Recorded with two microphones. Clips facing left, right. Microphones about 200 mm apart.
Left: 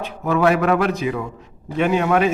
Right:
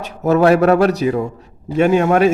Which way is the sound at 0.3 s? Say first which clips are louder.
Right 5 dB; 40° right (ahead or behind).